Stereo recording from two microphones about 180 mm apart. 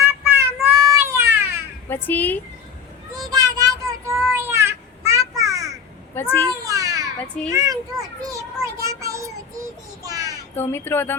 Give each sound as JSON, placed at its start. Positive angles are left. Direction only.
{"t": 0.0, "sound": "child singing", "side_deg": -15}
{"t": 1.9, "sound": "speech", "side_deg": 10}
{"t": 3.3, "sound": "child singing", "side_deg": -20}
{"t": 6.1, "sound": "speech", "side_deg": 10}
{"t": 6.7, "sound": "a sound", "side_deg": -20}
{"t": 7.5, "sound": "a child's voice", "side_deg": -20}
{"t": 8.3, "sound": "child singing", "side_deg": -15}
{"t": 10.5, "sound": "speech", "side_deg": 10}